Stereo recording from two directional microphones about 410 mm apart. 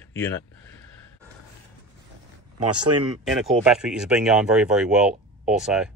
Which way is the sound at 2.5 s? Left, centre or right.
Right.